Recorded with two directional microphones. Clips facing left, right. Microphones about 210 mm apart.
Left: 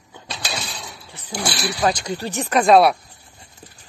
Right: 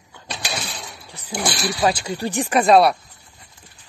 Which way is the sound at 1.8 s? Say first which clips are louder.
Right 1 dB; 10° right (ahead or behind).